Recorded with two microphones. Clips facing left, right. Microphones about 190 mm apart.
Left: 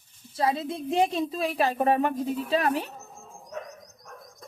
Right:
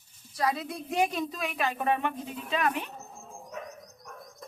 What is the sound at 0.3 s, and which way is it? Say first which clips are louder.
A woman's voice: left 3 dB; 25° left (ahead or behind).